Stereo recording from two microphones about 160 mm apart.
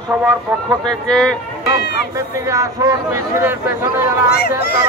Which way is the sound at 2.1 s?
20° right (ahead or behind).